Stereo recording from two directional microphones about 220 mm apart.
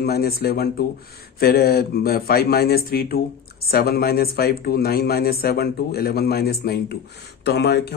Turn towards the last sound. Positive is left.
turn(degrees=50)  # may be behind; listen again after turning